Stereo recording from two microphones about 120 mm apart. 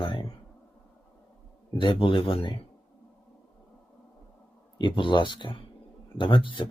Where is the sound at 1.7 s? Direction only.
40° left (ahead or behind).